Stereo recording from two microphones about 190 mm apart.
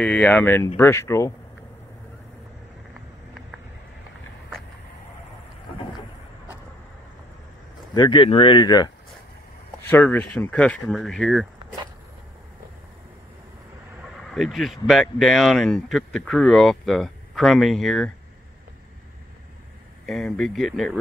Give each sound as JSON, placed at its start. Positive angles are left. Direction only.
{"t": 0.0, "sound": "speech", "side_deg": 5}
{"t": 7.9, "sound": "speech", "side_deg": 25}
{"t": 9.8, "sound": "speech", "side_deg": 10}
{"t": 14.3, "sound": "speech", "side_deg": 0}
{"t": 20.1, "sound": "speech", "side_deg": 0}